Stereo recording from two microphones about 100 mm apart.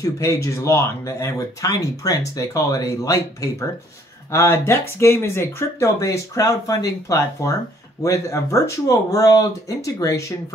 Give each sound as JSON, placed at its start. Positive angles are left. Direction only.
{"t": 0.0, "sound": "speech", "side_deg": 30}